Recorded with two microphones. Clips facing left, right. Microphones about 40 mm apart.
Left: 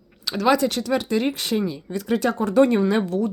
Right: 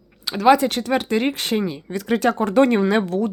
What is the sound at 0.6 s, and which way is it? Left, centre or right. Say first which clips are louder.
Speech: right 1 dB; right.